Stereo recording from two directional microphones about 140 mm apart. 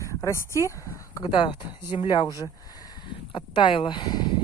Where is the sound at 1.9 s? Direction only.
35° left (ahead or behind).